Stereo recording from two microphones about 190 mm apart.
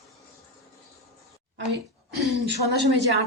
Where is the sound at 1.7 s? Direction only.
65° right (ahead or behind).